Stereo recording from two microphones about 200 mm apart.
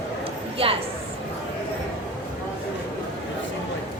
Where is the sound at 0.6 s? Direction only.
30° right (ahead or behind).